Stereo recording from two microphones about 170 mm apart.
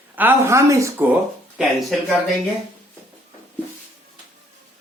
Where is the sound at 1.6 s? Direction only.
Centre (ahead or behind).